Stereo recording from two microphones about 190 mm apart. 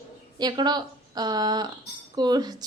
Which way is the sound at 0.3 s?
20° right (ahead or behind).